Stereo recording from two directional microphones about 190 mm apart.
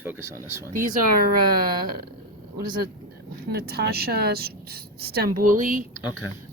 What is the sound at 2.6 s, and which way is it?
Speech, 50° right (ahead or behind).